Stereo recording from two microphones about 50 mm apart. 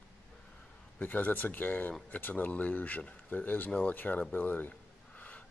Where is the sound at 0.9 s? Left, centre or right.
Left.